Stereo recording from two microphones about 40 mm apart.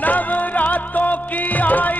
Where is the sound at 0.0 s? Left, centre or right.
Left.